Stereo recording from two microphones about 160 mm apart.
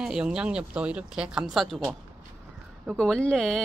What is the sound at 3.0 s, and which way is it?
Speech, 5° left (ahead or behind).